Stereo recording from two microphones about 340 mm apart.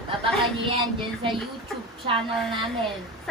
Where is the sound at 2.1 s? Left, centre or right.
Centre.